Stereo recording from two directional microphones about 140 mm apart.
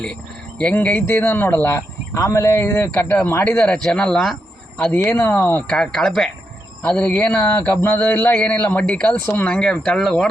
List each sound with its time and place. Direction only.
0.6 s speech: 10° left (ahead or behind)
5.1 s speech: 15° left (ahead or behind)